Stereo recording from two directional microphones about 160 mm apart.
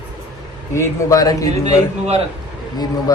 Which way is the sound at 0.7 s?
20° left (ahead or behind).